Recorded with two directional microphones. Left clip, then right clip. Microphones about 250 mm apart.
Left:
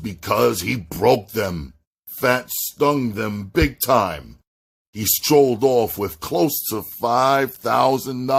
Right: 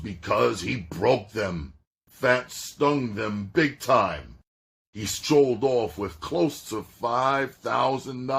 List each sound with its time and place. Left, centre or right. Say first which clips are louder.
0.0 s speech: left 5 dB; left